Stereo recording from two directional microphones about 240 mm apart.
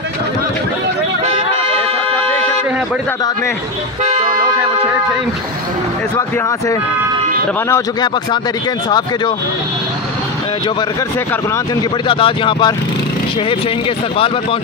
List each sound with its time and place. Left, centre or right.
1.2 s music: right
7.7 s speech: centre
11.5 s speech: centre
14.1 s speech: left